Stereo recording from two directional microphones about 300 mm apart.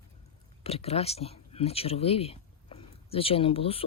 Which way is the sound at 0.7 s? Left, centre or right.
Centre.